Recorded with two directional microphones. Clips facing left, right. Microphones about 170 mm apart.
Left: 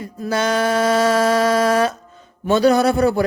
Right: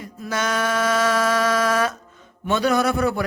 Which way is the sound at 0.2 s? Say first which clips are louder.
Left 5 dB; 30° left (ahead or behind).